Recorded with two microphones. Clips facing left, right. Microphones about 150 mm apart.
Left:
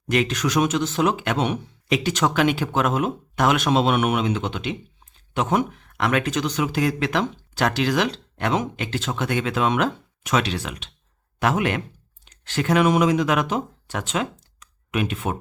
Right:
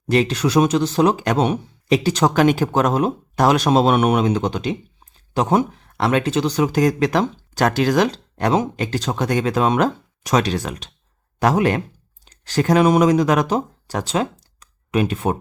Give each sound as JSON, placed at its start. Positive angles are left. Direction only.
{"t": 0.1, "sound": "speech", "side_deg": -35}